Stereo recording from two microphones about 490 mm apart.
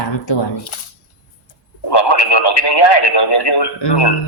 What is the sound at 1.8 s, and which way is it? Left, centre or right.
Speech, left.